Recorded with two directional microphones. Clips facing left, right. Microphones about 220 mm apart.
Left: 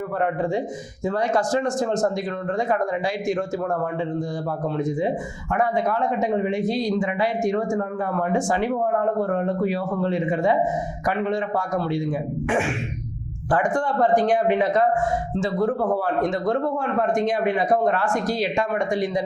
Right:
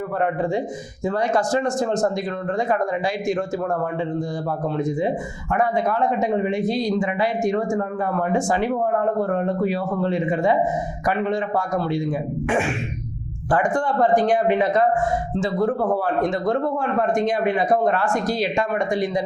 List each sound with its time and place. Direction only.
0.2 s speech: 20° right (ahead or behind)
4.8 s speech: 20° right (ahead or behind)
12.5 s a sound: 15° right (ahead or behind)
13.5 s speech: 20° right (ahead or behind)